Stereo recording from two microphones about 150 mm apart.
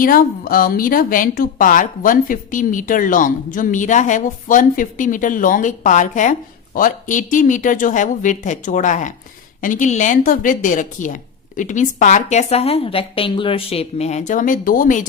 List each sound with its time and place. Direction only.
0.0 s speech: 70° left (ahead or behind)